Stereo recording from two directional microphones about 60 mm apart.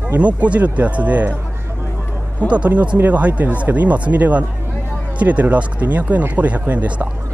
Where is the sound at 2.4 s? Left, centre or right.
Right.